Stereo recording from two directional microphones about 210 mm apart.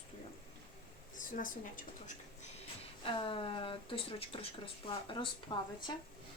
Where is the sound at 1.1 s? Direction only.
40° left (ahead or behind); by 5.9 s 20° left (ahead or behind).